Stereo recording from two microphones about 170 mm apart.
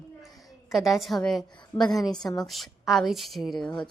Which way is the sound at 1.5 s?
25° left (ahead or behind).